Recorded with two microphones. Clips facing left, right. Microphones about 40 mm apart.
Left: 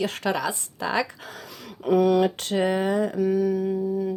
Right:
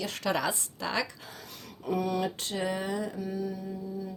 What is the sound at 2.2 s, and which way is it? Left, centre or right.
Speech, left.